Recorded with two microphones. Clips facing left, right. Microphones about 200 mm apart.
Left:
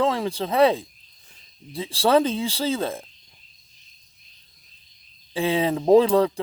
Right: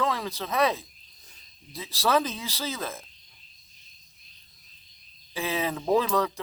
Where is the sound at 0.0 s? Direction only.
30° left (ahead or behind).